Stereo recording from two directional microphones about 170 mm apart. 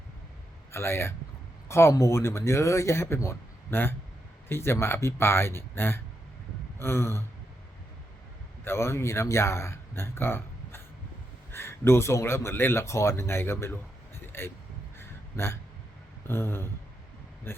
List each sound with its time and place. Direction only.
0.7 s speech: 15° left (ahead or behind)
6.7 s gasp: 15° left (ahead or behind)
8.6 s speech: 15° left (ahead or behind)
14.9 s a sound: 15° left (ahead or behind)